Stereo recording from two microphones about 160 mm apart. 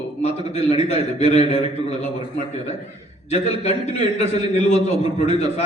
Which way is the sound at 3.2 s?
45° left (ahead or behind).